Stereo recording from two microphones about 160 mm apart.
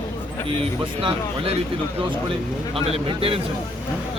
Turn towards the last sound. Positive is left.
turn(degrees=-35)  # may be behind; listen again after turning